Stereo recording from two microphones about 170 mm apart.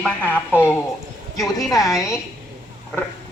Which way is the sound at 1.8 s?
Centre (ahead or behind).